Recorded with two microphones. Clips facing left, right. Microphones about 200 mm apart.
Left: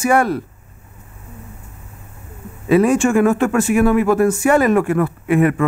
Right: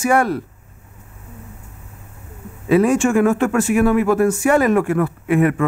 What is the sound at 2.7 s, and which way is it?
Speech, 20° left (ahead or behind).